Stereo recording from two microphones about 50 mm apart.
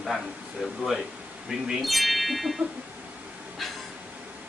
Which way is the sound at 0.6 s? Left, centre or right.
Centre.